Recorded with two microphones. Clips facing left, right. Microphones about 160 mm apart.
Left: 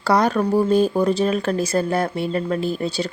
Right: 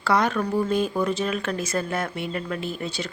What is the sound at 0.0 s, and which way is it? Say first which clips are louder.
Speech: left 4 dB; 35° left (ahead or behind).